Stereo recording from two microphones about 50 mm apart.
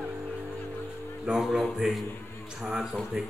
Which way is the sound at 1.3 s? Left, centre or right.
Centre.